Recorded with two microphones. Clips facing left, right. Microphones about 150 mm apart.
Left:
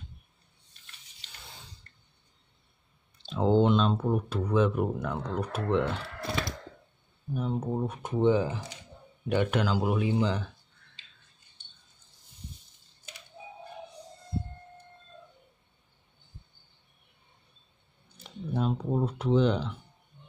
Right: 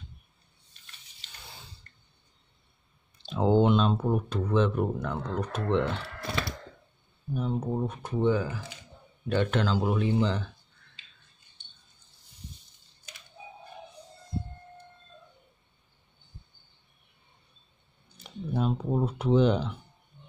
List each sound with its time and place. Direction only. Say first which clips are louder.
3.3 s speech: right 1 dB; 10° right (ahead or behind)
4.3 s speech: left 2 dB; 5° left (ahead or behind)
7.3 s speech: right 1 dB; 5° left (ahead or behind)
8.1 s speech: left 2 dB; 20° left (ahead or behind)
18.1 s a sound: right 1 dB; 5° right (ahead or behind)